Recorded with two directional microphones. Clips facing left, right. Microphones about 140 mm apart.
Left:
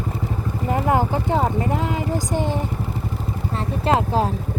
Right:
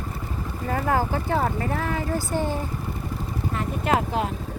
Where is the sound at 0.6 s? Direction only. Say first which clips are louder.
Left 4 dB; 20° left (ahead or behind).